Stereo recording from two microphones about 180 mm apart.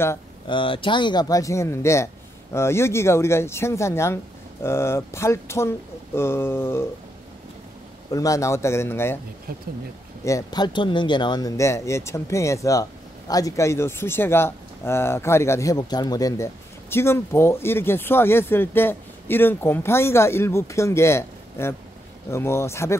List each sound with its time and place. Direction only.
0.5 s speech: 30° left (ahead or behind); by 6.9 s 15° left (ahead or behind)
8.1 s speech: 20° left (ahead or behind)
10.2 s speech: 20° left (ahead or behind)